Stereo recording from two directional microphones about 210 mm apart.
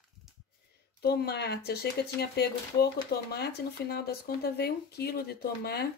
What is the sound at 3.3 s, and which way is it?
Speech, 50° left (ahead or behind).